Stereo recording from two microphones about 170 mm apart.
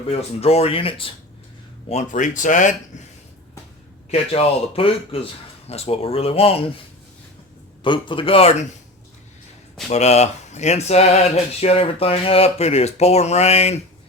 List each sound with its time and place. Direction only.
0.1 s speech: 35° left (ahead or behind)
1.9 s speech: 45° left (ahead or behind)
4.1 s speech: 35° left (ahead or behind)
7.9 s speech: 30° left (ahead or behind)
9.9 s speech: 40° left (ahead or behind)